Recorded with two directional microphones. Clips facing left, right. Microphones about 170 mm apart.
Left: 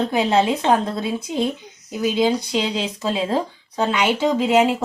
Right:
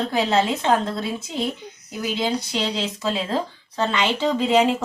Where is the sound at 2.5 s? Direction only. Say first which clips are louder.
Left 3 dB; 10° left (ahead or behind).